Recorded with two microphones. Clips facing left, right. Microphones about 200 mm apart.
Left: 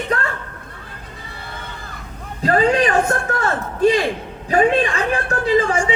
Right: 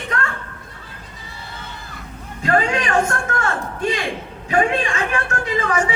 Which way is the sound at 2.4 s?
35° left (ahead or behind).